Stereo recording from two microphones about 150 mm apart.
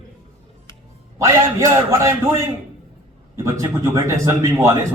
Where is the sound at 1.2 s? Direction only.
20° right (ahead or behind).